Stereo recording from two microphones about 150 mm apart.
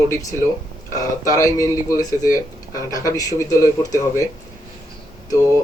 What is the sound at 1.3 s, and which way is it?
Speech, 20° left (ahead or behind).